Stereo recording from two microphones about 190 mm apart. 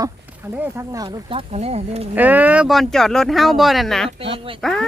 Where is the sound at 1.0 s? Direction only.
30° right (ahead or behind).